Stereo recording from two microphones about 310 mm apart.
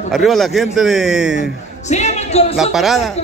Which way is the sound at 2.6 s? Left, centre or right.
Centre.